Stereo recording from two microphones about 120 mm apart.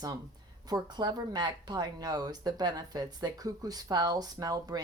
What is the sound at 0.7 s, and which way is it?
Speech, 35° right (ahead or behind).